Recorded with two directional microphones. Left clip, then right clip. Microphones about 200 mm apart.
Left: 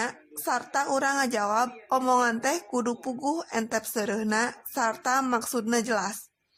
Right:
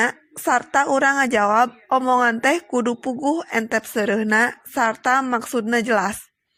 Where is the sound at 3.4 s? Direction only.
20° right (ahead or behind).